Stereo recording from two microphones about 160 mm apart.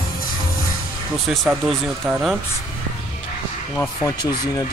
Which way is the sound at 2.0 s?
Centre (ahead or behind).